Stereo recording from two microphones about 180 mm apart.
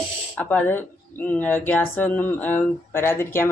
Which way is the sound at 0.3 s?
10° left (ahead or behind).